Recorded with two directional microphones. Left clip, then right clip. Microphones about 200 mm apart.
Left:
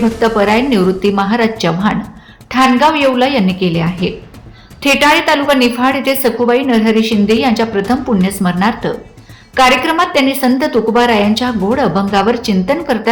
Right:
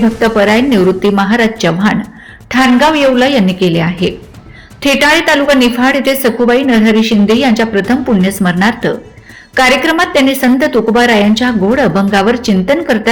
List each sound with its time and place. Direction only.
0.2 s a woman's voice: 10° right (ahead or behind)